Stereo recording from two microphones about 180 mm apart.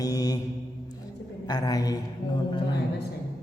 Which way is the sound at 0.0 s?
20° left (ahead or behind).